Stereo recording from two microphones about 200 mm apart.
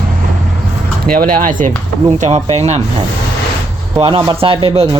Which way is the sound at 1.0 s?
45° right (ahead or behind).